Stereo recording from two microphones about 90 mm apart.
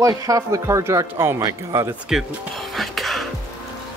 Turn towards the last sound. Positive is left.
turn(degrees=0)  # may be behind; listen again after turning